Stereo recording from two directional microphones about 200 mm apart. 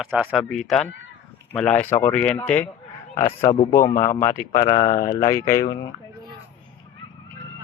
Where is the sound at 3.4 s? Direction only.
35° left (ahead or behind).